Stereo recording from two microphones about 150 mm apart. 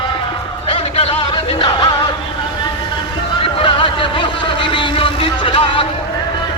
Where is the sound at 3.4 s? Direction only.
35° left (ahead or behind).